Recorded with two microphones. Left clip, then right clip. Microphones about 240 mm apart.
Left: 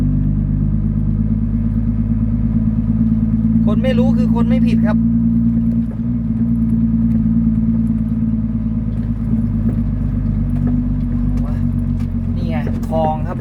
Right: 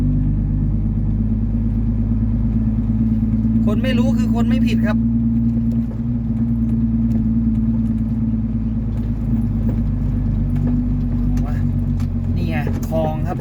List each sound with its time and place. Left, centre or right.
3.7 s vehicle: centre
4.4 s speech: centre